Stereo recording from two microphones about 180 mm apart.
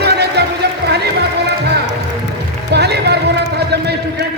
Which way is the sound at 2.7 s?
65° right (ahead or behind).